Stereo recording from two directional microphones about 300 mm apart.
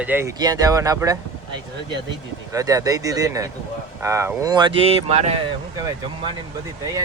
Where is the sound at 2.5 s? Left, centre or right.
Centre.